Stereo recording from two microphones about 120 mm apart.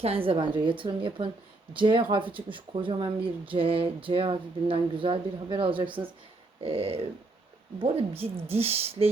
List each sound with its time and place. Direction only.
0.0 s speech: 50° right (ahead or behind)